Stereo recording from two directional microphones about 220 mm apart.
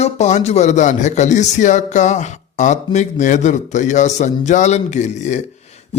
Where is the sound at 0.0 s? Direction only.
30° left (ahead or behind).